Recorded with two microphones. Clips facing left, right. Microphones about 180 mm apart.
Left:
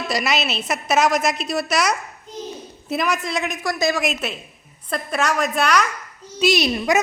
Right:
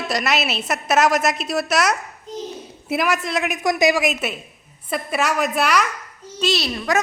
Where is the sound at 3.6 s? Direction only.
15° right (ahead or behind).